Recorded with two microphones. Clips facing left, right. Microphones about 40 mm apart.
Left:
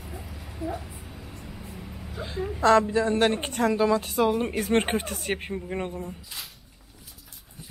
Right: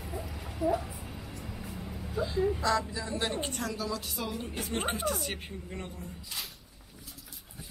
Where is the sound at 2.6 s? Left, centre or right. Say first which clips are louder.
Left 10 dB; left.